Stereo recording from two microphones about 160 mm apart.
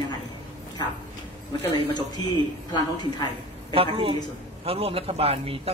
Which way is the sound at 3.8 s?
35° right (ahead or behind).